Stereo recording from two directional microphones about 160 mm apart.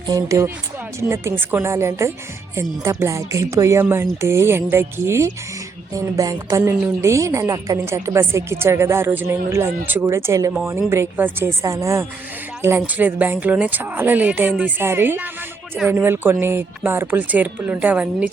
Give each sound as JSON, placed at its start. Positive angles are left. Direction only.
{"t": 0.1, "sound": "a woman's voice", "side_deg": -20}